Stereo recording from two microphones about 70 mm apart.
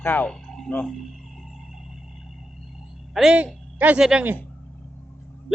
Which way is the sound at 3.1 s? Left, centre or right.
Centre.